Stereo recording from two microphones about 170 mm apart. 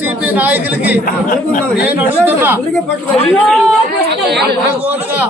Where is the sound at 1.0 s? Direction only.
55° left (ahead or behind).